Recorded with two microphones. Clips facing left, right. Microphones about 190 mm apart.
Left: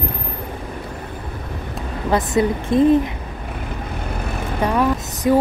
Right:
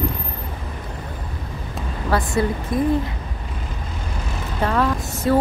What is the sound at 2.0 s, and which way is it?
Speech, 20° left (ahead or behind).